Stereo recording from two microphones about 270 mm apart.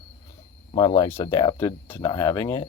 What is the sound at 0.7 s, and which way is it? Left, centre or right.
Speech, centre.